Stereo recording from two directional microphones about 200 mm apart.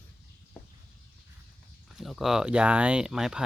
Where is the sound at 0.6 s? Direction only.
5° left (ahead or behind).